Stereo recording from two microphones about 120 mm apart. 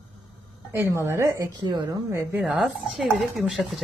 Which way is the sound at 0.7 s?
20° right (ahead or behind).